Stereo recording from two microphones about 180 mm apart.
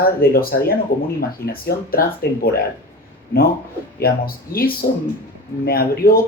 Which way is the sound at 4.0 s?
55° left (ahead or behind).